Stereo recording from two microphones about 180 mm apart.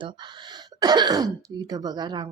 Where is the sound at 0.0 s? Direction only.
25° right (ahead or behind).